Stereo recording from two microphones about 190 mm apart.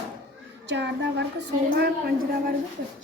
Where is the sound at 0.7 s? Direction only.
65° right (ahead or behind).